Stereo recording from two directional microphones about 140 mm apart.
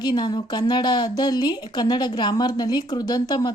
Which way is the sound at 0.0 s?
30° left (ahead or behind).